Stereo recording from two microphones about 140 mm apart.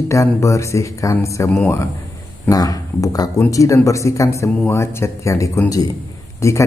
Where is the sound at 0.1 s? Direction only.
20° left (ahead or behind).